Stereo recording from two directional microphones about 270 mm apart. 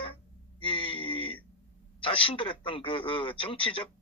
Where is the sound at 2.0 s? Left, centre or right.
Centre.